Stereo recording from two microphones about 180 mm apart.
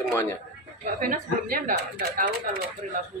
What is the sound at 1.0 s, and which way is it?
Speech, 50° right (ahead or behind).